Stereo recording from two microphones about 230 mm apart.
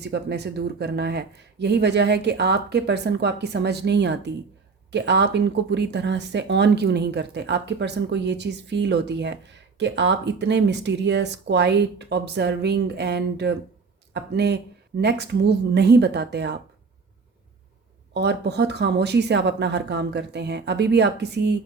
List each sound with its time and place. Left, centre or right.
0.0 s speech: right
18.1 s speech: right